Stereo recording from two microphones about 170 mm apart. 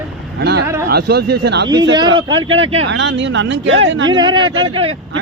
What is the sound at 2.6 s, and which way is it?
Speech, 35° right (ahead or behind).